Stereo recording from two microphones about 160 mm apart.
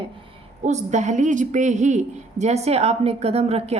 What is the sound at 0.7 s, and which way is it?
A woman's voice, 50° right (ahead or behind).